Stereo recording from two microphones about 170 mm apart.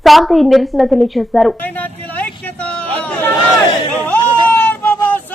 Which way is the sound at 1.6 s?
10° left (ahead or behind).